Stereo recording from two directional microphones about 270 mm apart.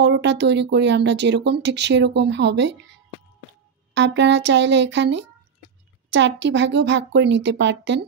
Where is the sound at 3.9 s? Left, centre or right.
Right.